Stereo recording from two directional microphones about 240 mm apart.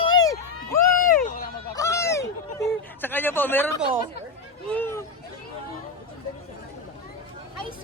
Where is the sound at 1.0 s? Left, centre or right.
Left.